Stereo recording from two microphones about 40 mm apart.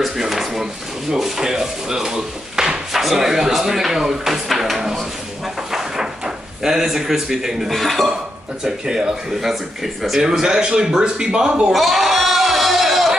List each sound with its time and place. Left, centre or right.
0.2 s a sound: centre
1.1 s speech: centre
5.7 s drawer open or close: centre
7.7 s speech: centre
8.6 s a man's voice: centre
11.7 s a sound: centre